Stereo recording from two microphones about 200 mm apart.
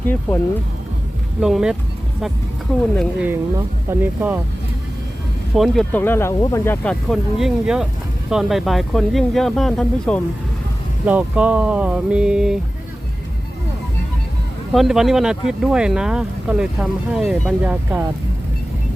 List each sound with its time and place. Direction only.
1.4 s speech: centre (ahead or behind)
2.9 s speech: centre (ahead or behind)
3.2 s speech: 10° right (ahead or behind)
5.5 s speech: centre (ahead or behind)
14.7 s speech: centre (ahead or behind)